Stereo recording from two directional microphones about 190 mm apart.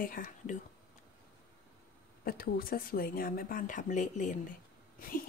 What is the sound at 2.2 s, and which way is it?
A woman's voice, 50° left (ahead or behind).